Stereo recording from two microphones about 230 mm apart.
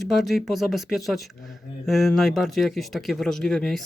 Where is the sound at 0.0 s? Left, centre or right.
Centre.